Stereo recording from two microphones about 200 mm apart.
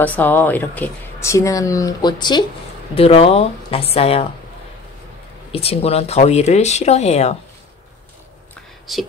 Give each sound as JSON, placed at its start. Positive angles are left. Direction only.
{"t": 0.0, "sound": "speech", "side_deg": 10}
{"t": 5.5, "sound": "speech", "side_deg": 30}
{"t": 8.9, "sound": "speech", "side_deg": 0}